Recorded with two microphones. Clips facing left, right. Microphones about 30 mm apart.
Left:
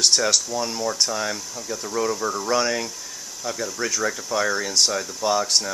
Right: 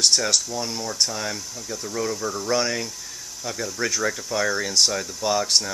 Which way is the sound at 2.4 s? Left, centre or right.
Centre.